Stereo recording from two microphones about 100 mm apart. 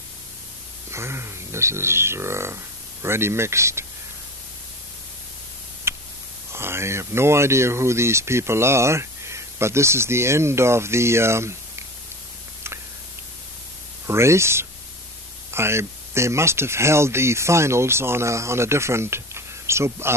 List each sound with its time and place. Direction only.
0.9 s speech: 25° right (ahead or behind)
5.9 s a sound: 25° right (ahead or behind)
6.5 s speech: 25° right (ahead or behind)
14.0 s speech: 25° right (ahead or behind)